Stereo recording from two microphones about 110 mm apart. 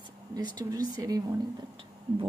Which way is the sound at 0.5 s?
35° right (ahead or behind).